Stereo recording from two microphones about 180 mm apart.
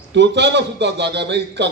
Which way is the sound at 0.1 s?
75° right (ahead or behind).